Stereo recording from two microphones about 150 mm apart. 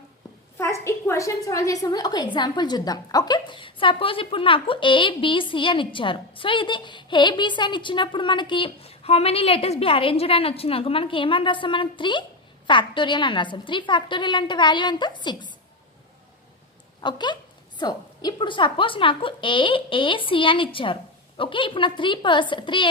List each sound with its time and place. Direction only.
0.6 s a woman's voice: 20° left (ahead or behind)
17.0 s a woman's voice: 30° left (ahead or behind)